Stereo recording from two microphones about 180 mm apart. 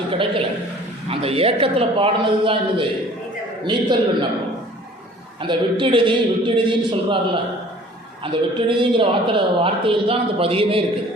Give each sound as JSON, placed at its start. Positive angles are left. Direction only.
{"t": 0.1, "sound": "a woman's voice", "side_deg": -30}
{"t": 5.4, "sound": "a woman's voice", "side_deg": -25}